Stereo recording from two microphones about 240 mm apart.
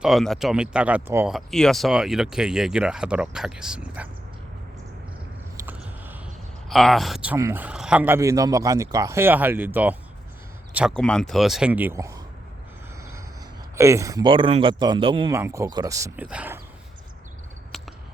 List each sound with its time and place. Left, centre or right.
0.0 s speech: centre
5.6 s a sound: centre
6.7 s speech: centre
13.7 s speech: centre